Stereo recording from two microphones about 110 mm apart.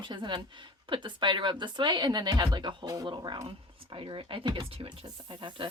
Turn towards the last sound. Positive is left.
turn(degrees=-50)  # may be behind; listen again after turning